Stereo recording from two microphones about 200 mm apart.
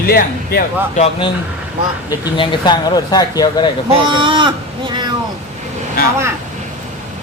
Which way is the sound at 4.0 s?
25° right (ahead or behind).